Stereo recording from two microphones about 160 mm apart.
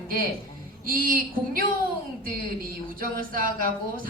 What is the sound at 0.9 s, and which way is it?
A woman's voice, 65° right (ahead or behind).